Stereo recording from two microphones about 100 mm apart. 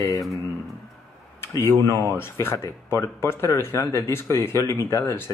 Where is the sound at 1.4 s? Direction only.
25° left (ahead or behind).